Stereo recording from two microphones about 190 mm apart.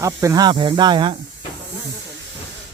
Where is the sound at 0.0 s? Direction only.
15° right (ahead or behind).